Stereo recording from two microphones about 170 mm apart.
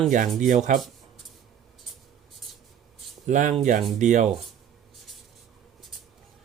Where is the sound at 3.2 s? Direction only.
50° right (ahead or behind).